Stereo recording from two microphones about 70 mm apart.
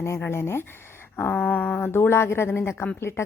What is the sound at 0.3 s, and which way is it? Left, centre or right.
Speech, left.